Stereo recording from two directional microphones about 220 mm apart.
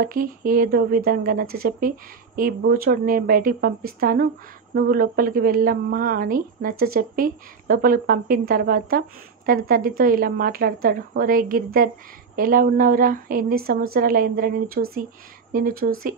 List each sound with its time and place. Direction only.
0.0 s speech: 40° right (ahead or behind)